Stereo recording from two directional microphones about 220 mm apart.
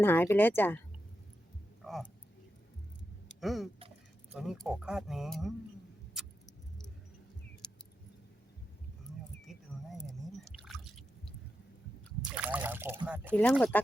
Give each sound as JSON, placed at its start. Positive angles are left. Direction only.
{"t": 0.0, "sound": "speech", "side_deg": 10}
{"t": 1.8, "sound": "a sound", "side_deg": 0}
{"t": 3.4, "sound": "speech", "side_deg": 0}
{"t": 3.8, "sound": "drip", "side_deg": -25}
{"t": 4.4, "sound": "speech", "side_deg": 0}
{"t": 9.5, "sound": "a sound", "side_deg": 0}
{"t": 12.3, "sound": "speech", "side_deg": -5}
{"t": 13.3, "sound": "speech", "side_deg": 5}